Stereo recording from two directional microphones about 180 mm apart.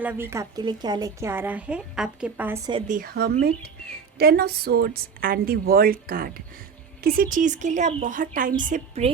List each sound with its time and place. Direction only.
0.0 s a woman's voice: 10° right (ahead or behind)
2.8 s a woman's voice: 50° right (ahead or behind)
8.7 s a woman's voice: 35° right (ahead or behind)